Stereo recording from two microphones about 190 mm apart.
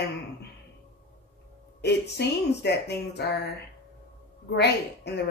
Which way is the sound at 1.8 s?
60° left (ahead or behind).